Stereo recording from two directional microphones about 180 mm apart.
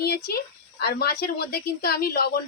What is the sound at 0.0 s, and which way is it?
Speech, 60° left (ahead or behind).